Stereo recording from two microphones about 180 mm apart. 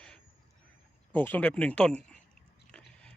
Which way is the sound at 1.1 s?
10° left (ahead or behind).